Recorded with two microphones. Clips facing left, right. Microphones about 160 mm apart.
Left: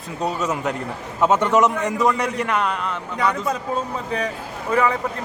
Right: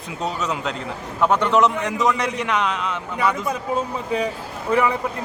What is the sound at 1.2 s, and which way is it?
A man's voice, 15° left (ahead or behind).